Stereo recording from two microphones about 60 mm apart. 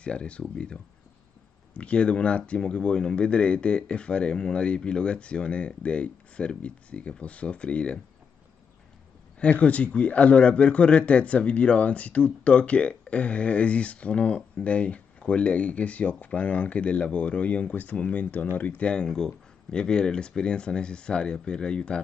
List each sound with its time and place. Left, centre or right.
0.0 s a man's voice: centre
9.4 s a man's voice: left